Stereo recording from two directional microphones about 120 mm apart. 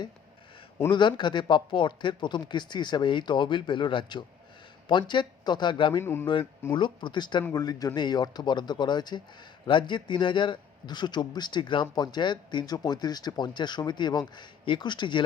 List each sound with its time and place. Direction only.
0.9 s a man's voice: 40° left (ahead or behind)
6.0 s speech: 20° left (ahead or behind)
6.7 s a man's voice: 40° left (ahead or behind)